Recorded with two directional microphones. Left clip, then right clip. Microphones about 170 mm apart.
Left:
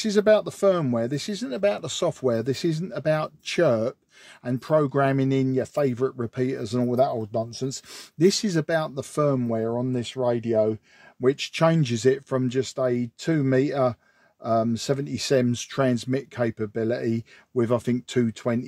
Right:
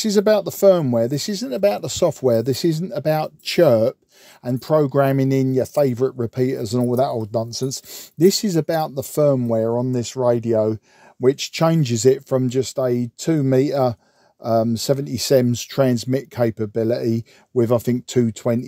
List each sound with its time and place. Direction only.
0.0 s speech: 45° right (ahead or behind)